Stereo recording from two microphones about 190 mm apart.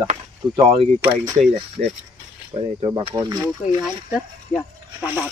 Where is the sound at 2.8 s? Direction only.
30° right (ahead or behind).